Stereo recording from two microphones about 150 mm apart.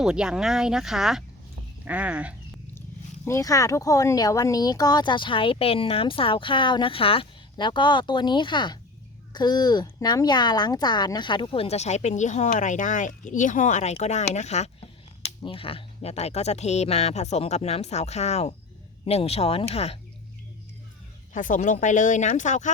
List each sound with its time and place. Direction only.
0.0 s speech: 5° right (ahead or behind)
3.2 s speech: 20° left (ahead or behind); by 20.0 s 40° left (ahead or behind)
21.3 s speech: 60° left (ahead or behind)